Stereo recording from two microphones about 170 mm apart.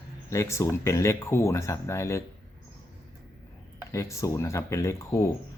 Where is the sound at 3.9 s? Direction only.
15° left (ahead or behind).